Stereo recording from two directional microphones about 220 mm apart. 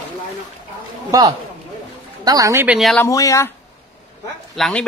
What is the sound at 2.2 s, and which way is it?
Speech, 15° right (ahead or behind).